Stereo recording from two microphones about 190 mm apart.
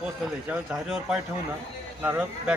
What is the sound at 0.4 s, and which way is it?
Speech, 5° right (ahead or behind).